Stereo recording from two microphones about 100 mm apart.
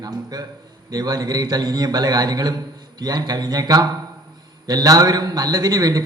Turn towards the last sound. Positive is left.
turn(degrees=-40)  # may be behind; listen again after turning